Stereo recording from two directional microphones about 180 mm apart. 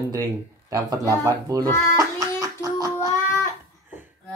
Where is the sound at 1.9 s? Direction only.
20° right (ahead or behind).